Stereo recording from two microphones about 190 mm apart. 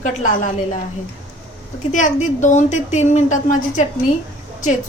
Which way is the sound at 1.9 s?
40° left (ahead or behind).